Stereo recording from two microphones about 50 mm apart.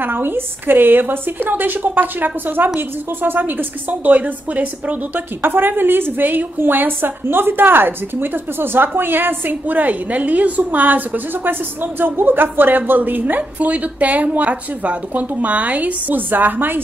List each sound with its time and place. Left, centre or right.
0.0 s a woman's voice: right
5.4 s a woman's voice: right